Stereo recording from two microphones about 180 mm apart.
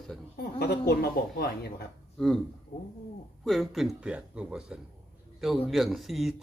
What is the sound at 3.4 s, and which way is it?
Speech, centre (ahead or behind).